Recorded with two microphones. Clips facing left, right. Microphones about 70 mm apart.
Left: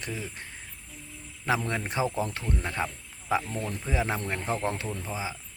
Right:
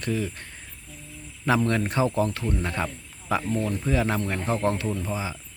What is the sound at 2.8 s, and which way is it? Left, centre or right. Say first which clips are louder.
Cricket: right 2 dB; centre.